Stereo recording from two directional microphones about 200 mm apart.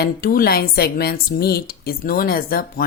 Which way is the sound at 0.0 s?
45° left (ahead or behind).